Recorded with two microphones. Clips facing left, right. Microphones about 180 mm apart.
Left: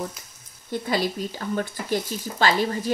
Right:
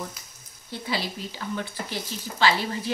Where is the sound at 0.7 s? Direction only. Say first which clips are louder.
Left 6 dB; 45° left (ahead or behind).